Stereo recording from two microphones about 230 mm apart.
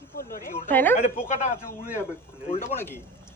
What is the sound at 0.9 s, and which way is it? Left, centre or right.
Speech, left.